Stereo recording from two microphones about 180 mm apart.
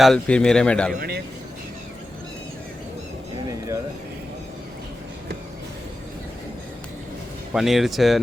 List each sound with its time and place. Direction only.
0.0 s speech: 5° left (ahead or behind)
0.9 s speech: 60° right (ahead or behind)
7.5 s speech: centre (ahead or behind)